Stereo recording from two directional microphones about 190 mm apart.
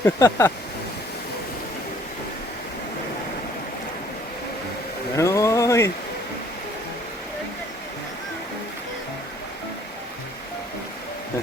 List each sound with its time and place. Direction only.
0.0 s speech: 15° left (ahead or behind)
5.1 s speech: 15° left (ahead or behind)